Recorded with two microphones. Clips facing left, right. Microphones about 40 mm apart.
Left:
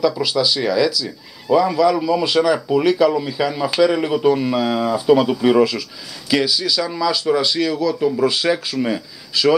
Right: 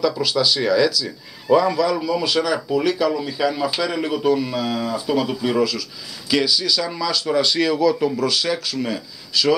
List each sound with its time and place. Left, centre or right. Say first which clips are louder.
0.0 s a man's voice: left 2 dB; centre
6.3 s a man's voice: left 1 dB; centre
7.5 s speech: right 1 dB; centre
8.2 s speech: left 4 dB; centre